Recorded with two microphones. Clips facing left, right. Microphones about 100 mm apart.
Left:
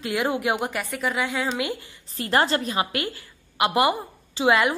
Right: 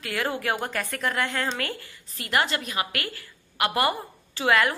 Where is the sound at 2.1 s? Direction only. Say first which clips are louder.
Left 4 dB; 35° left (ahead or behind).